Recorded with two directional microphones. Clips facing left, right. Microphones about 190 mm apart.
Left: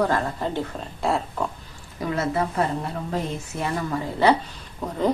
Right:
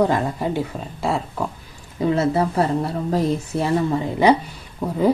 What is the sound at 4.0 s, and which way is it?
Speech, 15° right (ahead or behind).